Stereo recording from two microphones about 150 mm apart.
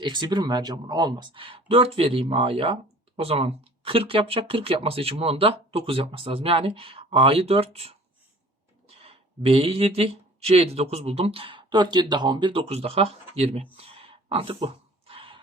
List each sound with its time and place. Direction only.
0.0 s speech: 30° right (ahead or behind)
9.0 s speech: 40° right (ahead or behind)
13.7 s a sound: 40° right (ahead or behind)